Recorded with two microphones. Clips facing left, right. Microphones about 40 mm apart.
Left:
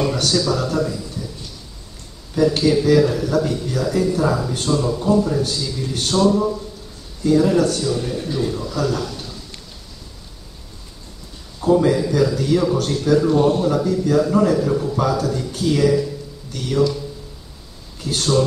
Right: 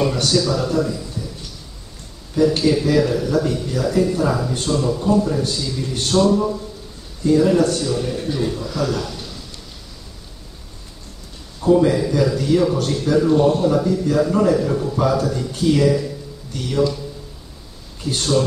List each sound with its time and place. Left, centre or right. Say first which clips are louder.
0.0 s speech: right 1 dB; centre
2.3 s speech: even; centre
8.3 s a man's voice: even; centre
8.8 s speech: left 1 dB; centre
11.6 s speech: right 1 dB; centre
13.3 s speech: right 1 dB; centre
16.8 s a man's voice: even; centre
18.1 s a man's voice: even; centre